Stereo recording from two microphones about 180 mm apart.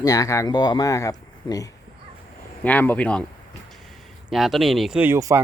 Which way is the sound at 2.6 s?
10° left (ahead or behind).